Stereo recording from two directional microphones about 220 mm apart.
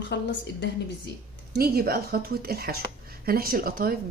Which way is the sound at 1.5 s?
45° right (ahead or behind).